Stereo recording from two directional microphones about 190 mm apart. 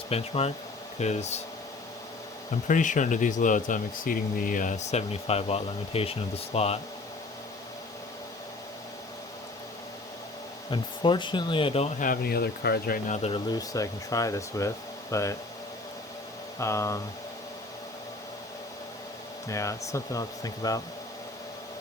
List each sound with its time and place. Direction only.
0.1 s speech: 30° left (ahead or behind)
2.6 s speech: 40° left (ahead or behind)
10.7 s speech: 25° left (ahead or behind)
12.0 s speech: 50° left (ahead or behind)
13.1 s speech: 35° left (ahead or behind)
13.5 s speech: 20° left (ahead or behind)
16.6 s speech: 15° left (ahead or behind)
19.5 s speech: 15° left (ahead or behind)